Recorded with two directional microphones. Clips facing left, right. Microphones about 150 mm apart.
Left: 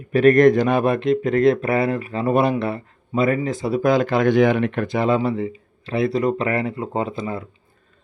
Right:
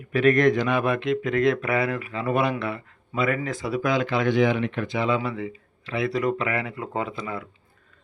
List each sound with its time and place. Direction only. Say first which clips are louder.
0.1 s speech: left 6 dB; 40° left (ahead or behind)